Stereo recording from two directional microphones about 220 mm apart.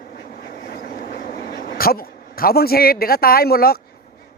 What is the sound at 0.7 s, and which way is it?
Vehicle, 45° left (ahead or behind).